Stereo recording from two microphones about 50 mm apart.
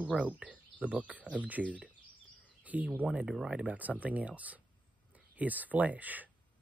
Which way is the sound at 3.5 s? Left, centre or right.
Right.